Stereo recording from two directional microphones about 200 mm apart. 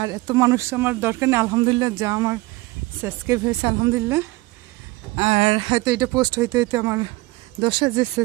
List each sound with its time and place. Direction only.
0.0 s speech: 20° right (ahead or behind)
5.1 s speech: 30° right (ahead or behind)